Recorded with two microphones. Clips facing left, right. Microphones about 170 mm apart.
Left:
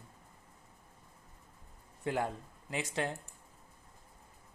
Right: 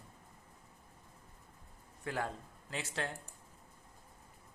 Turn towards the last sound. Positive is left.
turn(degrees=15)  # may be behind; listen again after turning